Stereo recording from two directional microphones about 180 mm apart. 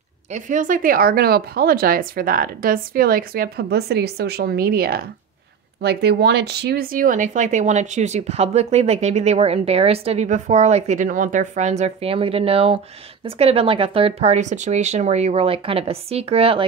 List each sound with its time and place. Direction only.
0.3 s speech: 45° right (ahead or behind)